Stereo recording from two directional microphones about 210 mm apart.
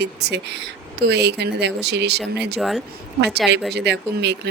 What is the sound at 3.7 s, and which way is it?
Speech, 55° right (ahead or behind).